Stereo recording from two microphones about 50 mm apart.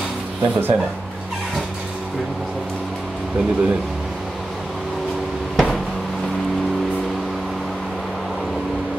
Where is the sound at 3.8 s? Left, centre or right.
Centre.